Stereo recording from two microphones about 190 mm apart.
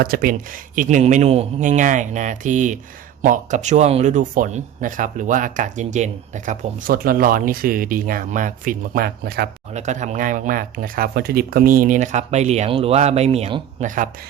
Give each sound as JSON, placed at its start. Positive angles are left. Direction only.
{"t": 0.0, "sound": "speech", "side_deg": -50}
{"t": 9.7, "sound": "speech", "side_deg": -40}